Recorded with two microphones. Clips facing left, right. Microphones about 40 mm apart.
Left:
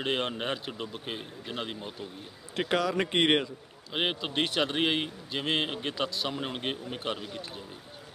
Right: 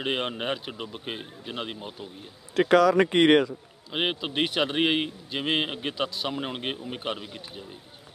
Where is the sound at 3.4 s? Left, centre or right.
Centre.